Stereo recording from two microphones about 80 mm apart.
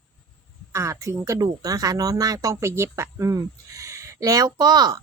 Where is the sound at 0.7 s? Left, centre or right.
Right.